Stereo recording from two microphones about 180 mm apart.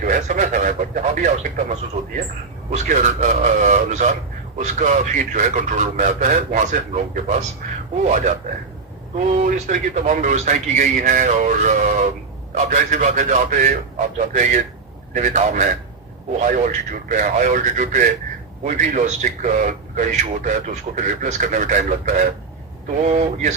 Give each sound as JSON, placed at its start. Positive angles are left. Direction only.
{"t": 0.0, "sound": "a man's voice", "side_deg": -45}
{"t": 2.7, "sound": "a man's voice", "side_deg": -40}